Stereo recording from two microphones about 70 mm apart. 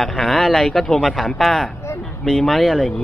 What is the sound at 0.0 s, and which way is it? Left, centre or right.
Speech, centre.